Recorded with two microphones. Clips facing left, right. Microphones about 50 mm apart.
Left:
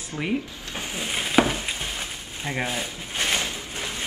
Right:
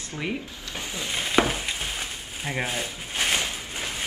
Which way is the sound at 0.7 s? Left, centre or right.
Left.